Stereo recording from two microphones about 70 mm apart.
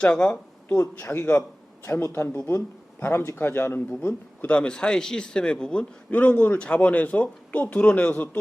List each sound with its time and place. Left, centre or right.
0.0 s speech: centre
0.8 s speech: left
4.5 s a man's voice: centre